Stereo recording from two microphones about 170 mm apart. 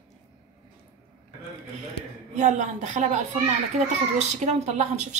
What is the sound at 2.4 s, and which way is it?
Speech, 45° right (ahead or behind).